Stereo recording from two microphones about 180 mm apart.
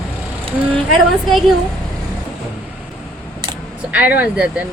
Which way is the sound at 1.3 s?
Centre (ahead or behind).